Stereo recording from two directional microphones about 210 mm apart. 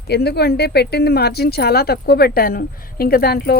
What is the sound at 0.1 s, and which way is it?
Speech, 50° left (ahead or behind).